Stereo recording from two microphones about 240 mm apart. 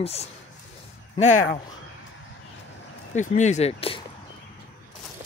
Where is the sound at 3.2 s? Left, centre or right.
Left.